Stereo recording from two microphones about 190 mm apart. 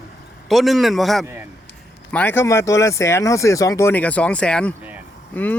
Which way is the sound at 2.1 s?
10° left (ahead or behind).